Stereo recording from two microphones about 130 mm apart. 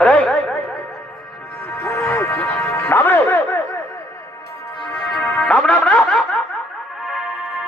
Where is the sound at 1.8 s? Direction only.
20° left (ahead or behind).